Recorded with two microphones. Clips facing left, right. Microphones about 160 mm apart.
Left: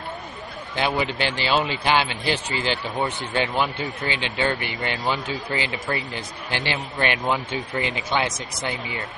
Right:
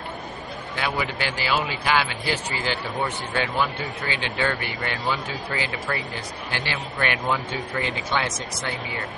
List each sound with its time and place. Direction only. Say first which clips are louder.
0.7 s speech: left 4 dB; 25° left (ahead or behind)